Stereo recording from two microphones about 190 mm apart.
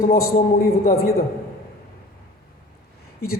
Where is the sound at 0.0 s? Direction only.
50° left (ahead or behind).